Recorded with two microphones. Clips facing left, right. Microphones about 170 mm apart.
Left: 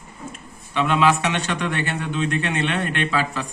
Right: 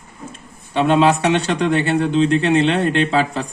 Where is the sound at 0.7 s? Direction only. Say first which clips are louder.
Right 5 dB; 30° right (ahead or behind).